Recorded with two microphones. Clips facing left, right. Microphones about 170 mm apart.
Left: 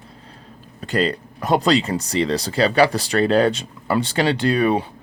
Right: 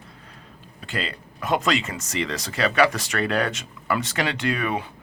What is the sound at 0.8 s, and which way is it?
Speech, 40° left (ahead or behind).